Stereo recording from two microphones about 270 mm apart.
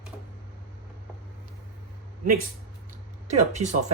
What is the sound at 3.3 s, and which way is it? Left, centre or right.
Speech, right.